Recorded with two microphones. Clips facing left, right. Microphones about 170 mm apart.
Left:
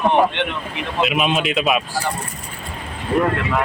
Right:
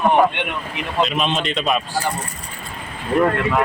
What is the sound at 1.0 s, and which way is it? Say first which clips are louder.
Speech: left 4 dB; 10° left (ahead or behind).